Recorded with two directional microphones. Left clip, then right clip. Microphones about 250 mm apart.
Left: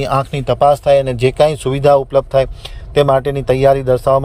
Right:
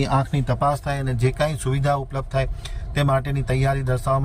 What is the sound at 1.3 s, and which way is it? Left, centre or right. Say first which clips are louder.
Speech: left 8 dB; left.